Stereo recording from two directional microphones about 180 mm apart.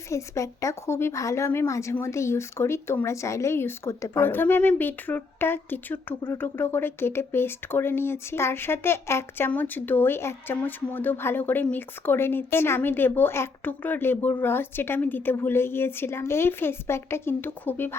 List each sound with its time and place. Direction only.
0.1 s speech: 15° left (ahead or behind)